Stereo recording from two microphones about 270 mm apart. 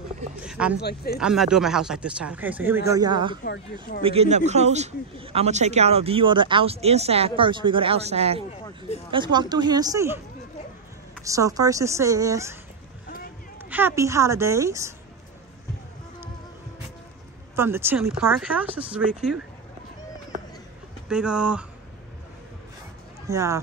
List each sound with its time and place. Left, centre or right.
0.4 s speech: centre
0.7 s speech: left
1.1 s speech: centre; by 8.5 s right
8.6 s speech: left
9.1 s a woman's voice: centre
11.2 s a woman's voice: centre
13.7 s a woman's voice: centre
17.6 s a woman's voice: centre
21.1 s speech: centre
23.2 s speech: centre